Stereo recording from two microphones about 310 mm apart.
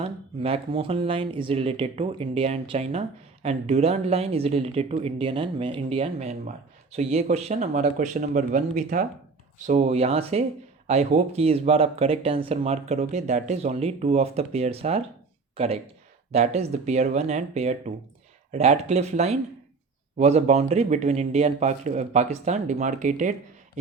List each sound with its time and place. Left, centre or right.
0.0 s speech: centre